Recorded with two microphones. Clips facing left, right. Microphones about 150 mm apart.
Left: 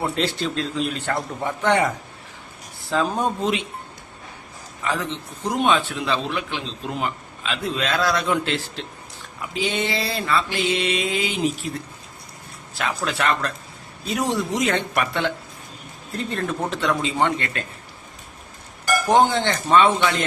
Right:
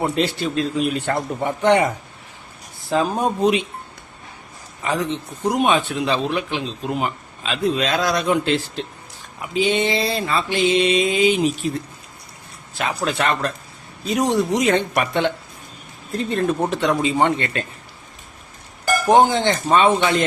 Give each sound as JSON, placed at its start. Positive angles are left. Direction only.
{"t": 0.0, "sound": "a man's voice", "side_deg": -15}
{"t": 2.9, "sound": "a man's voice", "side_deg": -10}
{"t": 4.8, "sound": "mantra", "side_deg": -20}
{"t": 5.5, "sound": "a man's voice", "side_deg": -15}
{"t": 9.4, "sound": "mantra", "side_deg": -20}
{"t": 12.8, "sound": "mantra", "side_deg": -20}
{"t": 19.0, "sound": "a man's voice", "side_deg": -15}